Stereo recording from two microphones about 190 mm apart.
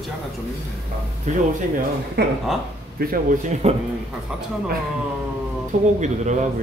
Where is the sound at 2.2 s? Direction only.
55° right (ahead or behind).